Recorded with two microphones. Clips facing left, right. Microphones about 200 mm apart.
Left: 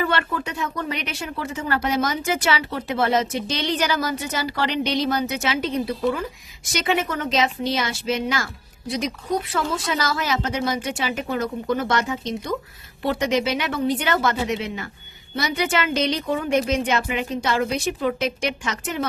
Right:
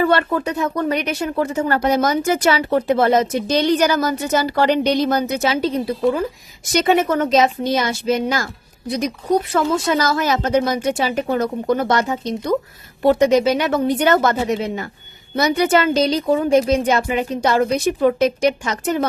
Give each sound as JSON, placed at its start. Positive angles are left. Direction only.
{"t": 0.0, "sound": "a woman's voice", "side_deg": -40}
{"t": 9.5, "sound": "a woman's voice", "side_deg": -45}